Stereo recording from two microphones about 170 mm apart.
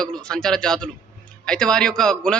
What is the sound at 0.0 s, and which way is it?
A man's voice, 5° left (ahead or behind).